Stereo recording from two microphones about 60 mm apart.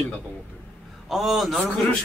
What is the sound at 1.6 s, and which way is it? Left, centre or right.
Speech, left.